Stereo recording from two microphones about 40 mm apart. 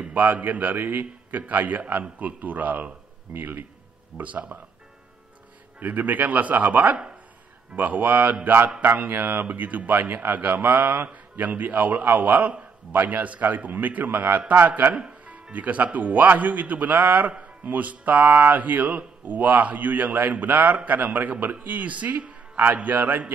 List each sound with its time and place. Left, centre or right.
0.0 s a man's voice: right
3.3 s speech: right
4.2 s speech: right
5.8 s a man's voice: right
9.1 s a man's voice: right